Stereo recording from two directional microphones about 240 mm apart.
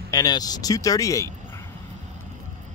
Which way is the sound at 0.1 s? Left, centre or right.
Centre.